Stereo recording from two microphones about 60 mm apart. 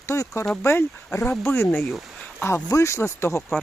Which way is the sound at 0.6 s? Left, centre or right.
Left.